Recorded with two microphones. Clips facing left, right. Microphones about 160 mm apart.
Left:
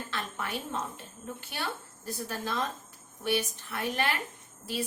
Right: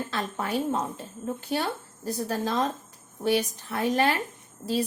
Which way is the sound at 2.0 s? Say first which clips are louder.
Right 7 dB; 40° right (ahead or behind).